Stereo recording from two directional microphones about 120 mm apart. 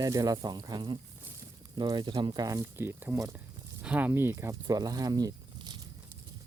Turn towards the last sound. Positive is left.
turn(degrees=-35)  # may be behind; listen again after turning